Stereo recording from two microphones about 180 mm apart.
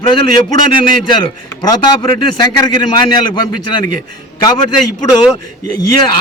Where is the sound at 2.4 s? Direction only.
20° left (ahead or behind).